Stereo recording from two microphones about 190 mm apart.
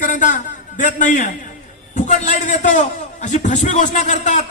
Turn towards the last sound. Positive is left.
turn(degrees=40)  # may be behind; listen again after turning